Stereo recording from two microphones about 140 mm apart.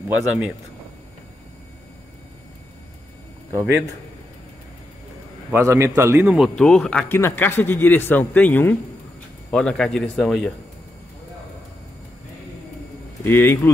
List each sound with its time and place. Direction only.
0.1 s a man's voice: 10° right (ahead or behind)
5.5 s a man's voice: 20° right (ahead or behind)
6.5 s speech: 5° left (ahead or behind)
7.1 s a man's voice: 15° left (ahead or behind); by 10.5 s centre (ahead or behind)
13.2 s a man's voice: 15° left (ahead or behind)